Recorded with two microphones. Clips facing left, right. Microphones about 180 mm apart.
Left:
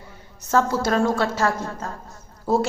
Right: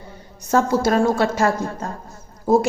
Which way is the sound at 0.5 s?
15° right (ahead or behind).